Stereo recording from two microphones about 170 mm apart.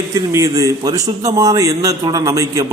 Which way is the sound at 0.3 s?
20° right (ahead or behind).